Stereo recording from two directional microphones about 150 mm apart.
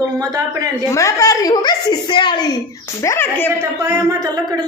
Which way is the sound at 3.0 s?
15° left (ahead or behind).